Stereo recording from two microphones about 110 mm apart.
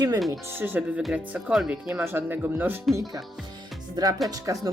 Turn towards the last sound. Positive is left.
turn(degrees=-35)  # may be behind; listen again after turning